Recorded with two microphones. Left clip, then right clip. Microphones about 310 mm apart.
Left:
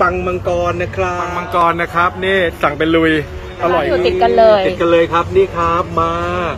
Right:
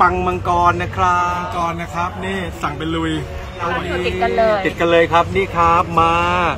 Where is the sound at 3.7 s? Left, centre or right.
Left.